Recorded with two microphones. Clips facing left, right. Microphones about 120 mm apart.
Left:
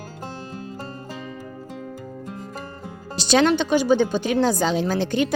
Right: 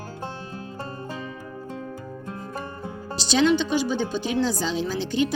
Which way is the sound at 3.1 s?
55° left (ahead or behind).